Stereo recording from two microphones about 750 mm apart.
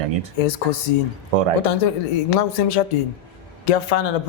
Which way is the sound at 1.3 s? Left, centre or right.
Right.